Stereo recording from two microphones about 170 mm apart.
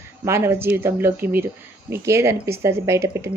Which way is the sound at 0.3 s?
15° right (ahead or behind).